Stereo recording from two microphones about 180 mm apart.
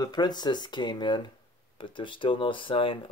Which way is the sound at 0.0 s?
25° left (ahead or behind).